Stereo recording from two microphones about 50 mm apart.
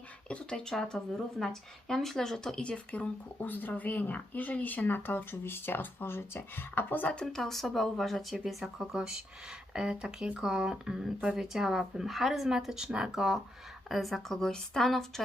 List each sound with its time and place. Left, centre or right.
0.3 s speech: centre; by 7.1 s left
7.1 s speech: centre
7.4 s speech: centre